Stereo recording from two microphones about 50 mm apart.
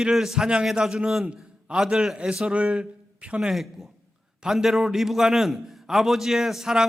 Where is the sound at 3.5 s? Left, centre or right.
Centre.